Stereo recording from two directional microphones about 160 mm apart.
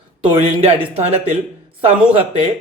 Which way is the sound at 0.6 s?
40° right (ahead or behind).